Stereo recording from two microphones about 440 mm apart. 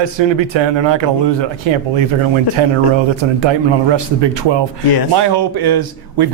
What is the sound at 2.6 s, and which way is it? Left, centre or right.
Speech, right.